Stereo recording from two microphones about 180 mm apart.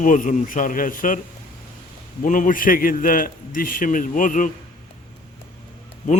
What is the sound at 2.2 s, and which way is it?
A man's voice, 45° left (ahead or behind).